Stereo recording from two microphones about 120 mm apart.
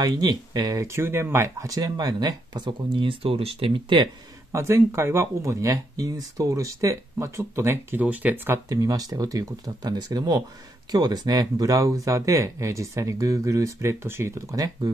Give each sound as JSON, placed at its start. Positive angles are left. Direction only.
{"t": 0.0, "sound": "speech", "side_deg": -35}
{"t": 4.5, "sound": "speech", "side_deg": -25}
{"t": 8.6, "sound": "speech", "side_deg": -30}